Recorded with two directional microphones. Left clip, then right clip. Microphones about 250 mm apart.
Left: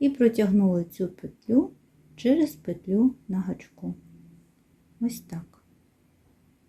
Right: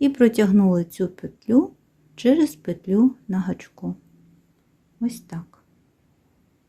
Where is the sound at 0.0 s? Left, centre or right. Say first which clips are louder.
Right 4 dB; right.